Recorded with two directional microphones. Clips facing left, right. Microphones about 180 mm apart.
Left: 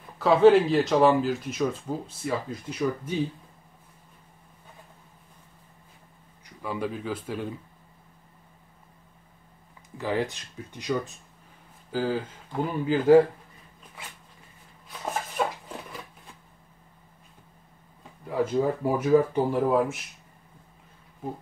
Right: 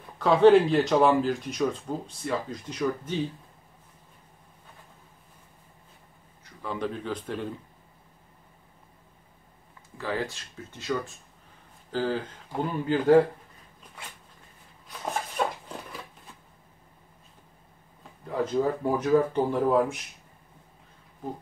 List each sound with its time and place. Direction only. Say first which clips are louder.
0.2 s speech: even; centre (ahead or behind)
6.4 s speech: left 1 dB; 10° left (ahead or behind)
9.9 s speech: left 3 dB; 15° left (ahead or behind)
14.9 s a sound: even; centre (ahead or behind)
18.2 s speech: left 1 dB; 10° left (ahead or behind)